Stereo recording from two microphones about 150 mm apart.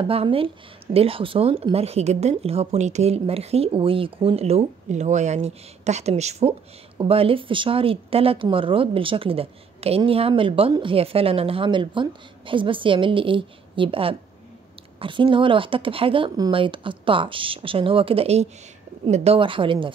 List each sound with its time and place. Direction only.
0.1 s speech: 40° right (ahead or behind)